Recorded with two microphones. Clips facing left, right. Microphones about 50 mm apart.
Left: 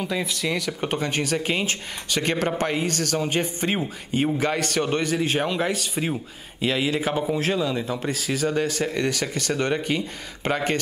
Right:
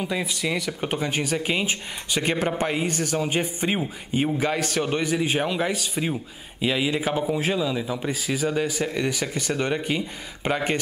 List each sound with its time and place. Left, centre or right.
0.0 s a man's voice: centre